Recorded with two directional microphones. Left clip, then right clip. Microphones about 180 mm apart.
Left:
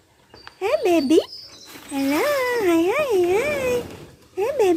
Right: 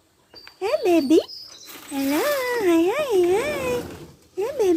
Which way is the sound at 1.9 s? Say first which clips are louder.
Left 2 dB; centre (ahead or behind).